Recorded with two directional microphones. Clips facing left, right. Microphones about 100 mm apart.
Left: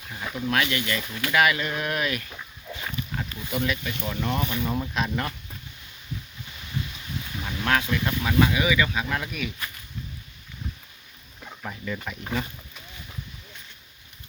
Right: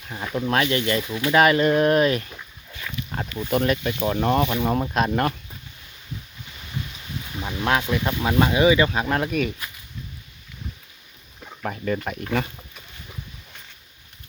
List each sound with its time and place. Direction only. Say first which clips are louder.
0.3 s speech: right 4 dB; 35° right (ahead or behind)
3.3 s speech: right 7 dB; 50° right (ahead or behind)
7.4 s speech: right 3 dB; 20° right (ahead or behind); by 9.5 s 45° right (ahead or behind)
11.6 s speech: right 7 dB; 50° right (ahead or behind)